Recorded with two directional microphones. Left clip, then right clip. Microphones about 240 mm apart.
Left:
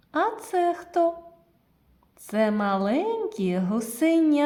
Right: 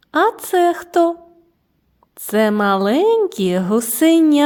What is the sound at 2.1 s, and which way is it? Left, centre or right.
A woman's voice, right.